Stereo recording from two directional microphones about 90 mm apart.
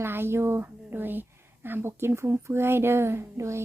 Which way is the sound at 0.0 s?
25° right (ahead or behind).